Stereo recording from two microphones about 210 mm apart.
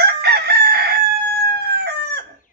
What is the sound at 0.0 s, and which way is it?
Chicken, 50° right (ahead or behind).